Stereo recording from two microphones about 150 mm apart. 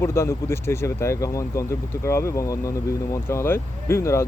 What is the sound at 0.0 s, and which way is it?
Speech, 20° left (ahead or behind).